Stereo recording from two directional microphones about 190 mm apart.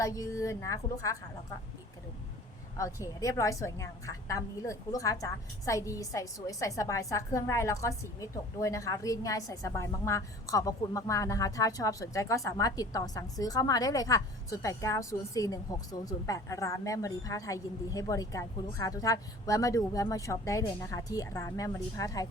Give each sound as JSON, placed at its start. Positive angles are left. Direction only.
{"t": 0.0, "sound": "a woman's voice", "side_deg": 15}
{"t": 2.7, "sound": "a woman's voice", "side_deg": 15}